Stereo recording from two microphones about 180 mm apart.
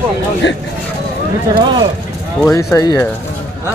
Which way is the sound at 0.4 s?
80° left.